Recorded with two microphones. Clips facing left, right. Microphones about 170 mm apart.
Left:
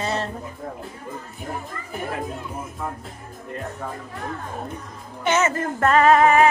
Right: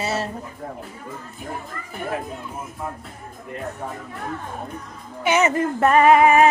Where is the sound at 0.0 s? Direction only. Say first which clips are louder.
Right 1 dB; 5° right (ahead or behind).